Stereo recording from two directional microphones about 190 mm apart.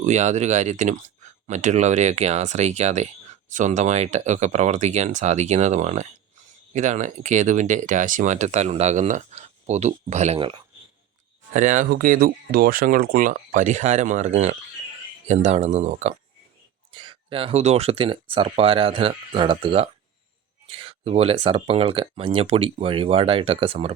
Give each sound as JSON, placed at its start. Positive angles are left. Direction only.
{"t": 0.0, "sound": "speech", "side_deg": -40}
{"t": 11.5, "sound": "speech", "side_deg": -40}
{"t": 16.9, "sound": "speech", "side_deg": -25}